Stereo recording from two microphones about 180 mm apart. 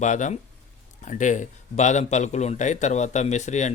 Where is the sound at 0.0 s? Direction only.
45° left (ahead or behind).